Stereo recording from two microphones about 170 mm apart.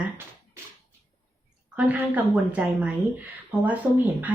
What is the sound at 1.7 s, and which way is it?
A woman's voice, 10° right (ahead or behind).